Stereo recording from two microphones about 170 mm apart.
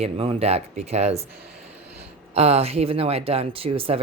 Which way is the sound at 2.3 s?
35° right (ahead or behind).